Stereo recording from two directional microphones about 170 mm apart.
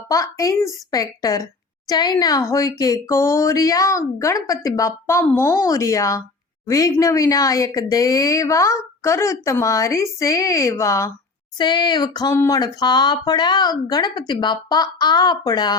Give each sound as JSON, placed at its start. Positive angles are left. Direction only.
{"t": 0.1, "sound": "speech", "side_deg": 20}